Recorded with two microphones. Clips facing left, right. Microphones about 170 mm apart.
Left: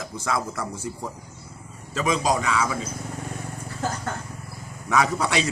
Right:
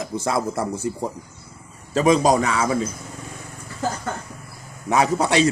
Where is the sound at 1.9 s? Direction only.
35° right (ahead or behind).